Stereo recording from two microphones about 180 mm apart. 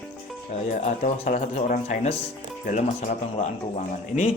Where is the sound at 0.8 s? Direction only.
40° left (ahead or behind).